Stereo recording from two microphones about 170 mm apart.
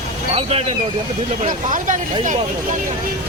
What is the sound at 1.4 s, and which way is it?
Speech, 50° right (ahead or behind).